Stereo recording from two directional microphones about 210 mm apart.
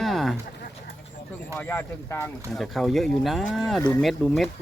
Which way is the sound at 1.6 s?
10° left (ahead or behind).